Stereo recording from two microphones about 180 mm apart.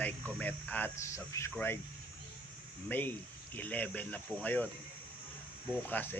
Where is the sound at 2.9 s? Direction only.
10° left (ahead or behind).